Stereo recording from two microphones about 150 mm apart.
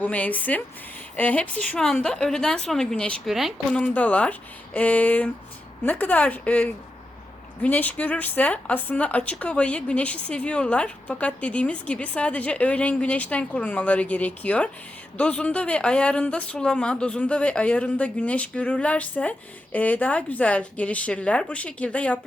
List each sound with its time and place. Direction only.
0.0 s speech: 10° left (ahead or behind)